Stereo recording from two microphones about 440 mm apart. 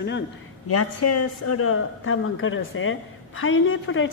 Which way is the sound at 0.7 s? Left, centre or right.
Left.